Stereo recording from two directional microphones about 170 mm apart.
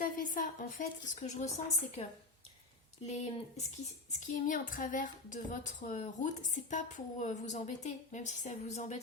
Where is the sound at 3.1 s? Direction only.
45° left (ahead or behind).